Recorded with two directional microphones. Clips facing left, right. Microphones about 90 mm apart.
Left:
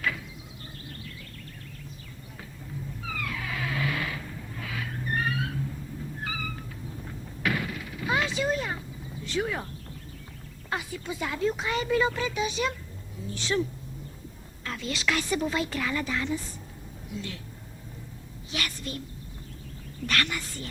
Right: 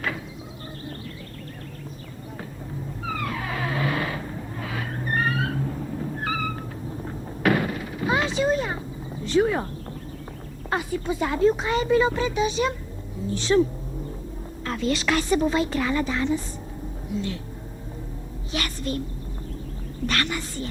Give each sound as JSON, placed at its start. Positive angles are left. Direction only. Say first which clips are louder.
{"t": 3.0, "sound": "a sound", "louder": "right 6 dB", "side_deg": -40}
{"t": 9.2, "sound": "speech", "louder": "right 9 dB", "side_deg": -35}
{"t": 10.7, "sound": "speech", "louder": "right 7 dB", "side_deg": -40}
{"t": 18.5, "sound": "speech", "louder": "right 6 dB", "side_deg": -35}
{"t": 20.1, "sound": "speech", "louder": "right 2 dB", "side_deg": -30}